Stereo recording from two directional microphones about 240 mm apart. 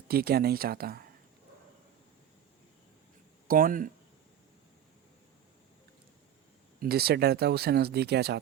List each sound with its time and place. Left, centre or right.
0.1 s speech: right
3.4 s speech: right
6.7 s speech: right